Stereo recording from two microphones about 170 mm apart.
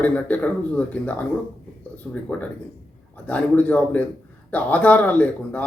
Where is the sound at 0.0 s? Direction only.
10° left (ahead or behind).